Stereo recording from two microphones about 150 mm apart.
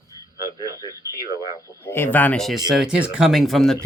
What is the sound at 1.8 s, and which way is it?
Speech, 15° left (ahead or behind).